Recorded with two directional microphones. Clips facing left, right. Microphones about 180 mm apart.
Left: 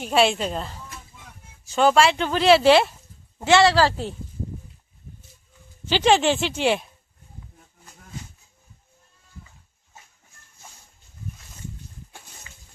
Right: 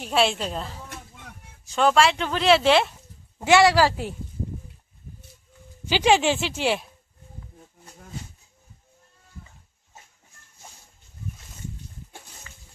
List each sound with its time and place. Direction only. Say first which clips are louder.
0.0 s speech: left 3 dB; centre (ahead or behind)
0.9 s a sound: right 2 dB; 65° right (ahead or behind)
1.6 s speech: left 2 dB; centre (ahead or behind)
3.4 s speech: even; 15° right (ahead or behind)
5.8 s speech: left 1 dB; 10° right (ahead or behind)